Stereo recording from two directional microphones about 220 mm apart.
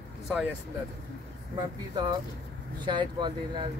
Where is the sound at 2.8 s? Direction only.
20° right (ahead or behind).